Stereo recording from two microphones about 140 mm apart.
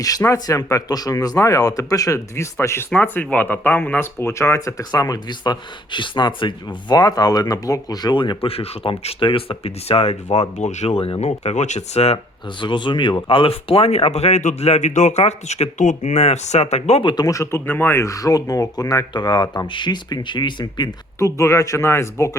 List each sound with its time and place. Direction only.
0.0 s speech: 25° left (ahead or behind); by 12.2 s 50° left (ahead or behind)
12.5 s speech: 35° left (ahead or behind)